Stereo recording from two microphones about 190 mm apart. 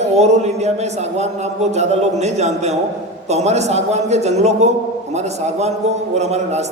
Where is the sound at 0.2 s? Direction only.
35° right (ahead or behind).